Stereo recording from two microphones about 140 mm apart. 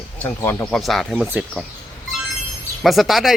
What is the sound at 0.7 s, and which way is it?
Speech, centre (ahead or behind).